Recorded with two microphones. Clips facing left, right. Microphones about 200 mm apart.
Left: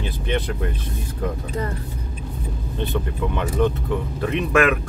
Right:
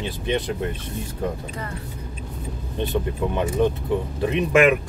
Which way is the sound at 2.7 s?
20° right (ahead or behind).